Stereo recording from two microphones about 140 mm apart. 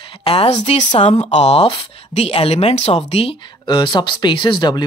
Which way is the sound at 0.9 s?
45° left (ahead or behind).